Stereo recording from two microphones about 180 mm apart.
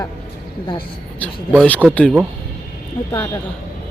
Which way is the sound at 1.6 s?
5° left (ahead or behind).